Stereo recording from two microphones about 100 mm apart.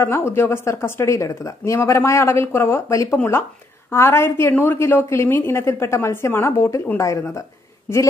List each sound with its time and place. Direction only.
0.0 s a woman's voice: 20° left (ahead or behind)